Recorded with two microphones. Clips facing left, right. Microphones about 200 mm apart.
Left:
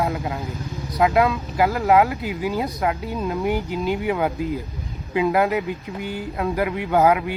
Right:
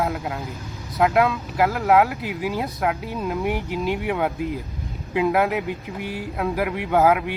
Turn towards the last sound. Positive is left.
turn(degrees=0)  # may be behind; listen again after turning